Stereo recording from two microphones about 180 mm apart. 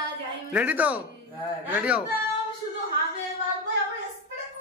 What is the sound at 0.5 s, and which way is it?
A man's voice, 10° right (ahead or behind).